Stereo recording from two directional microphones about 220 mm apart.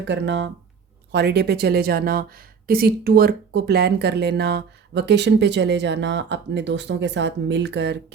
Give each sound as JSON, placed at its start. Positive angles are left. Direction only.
{"t": 0.0, "sound": "speech", "side_deg": -50}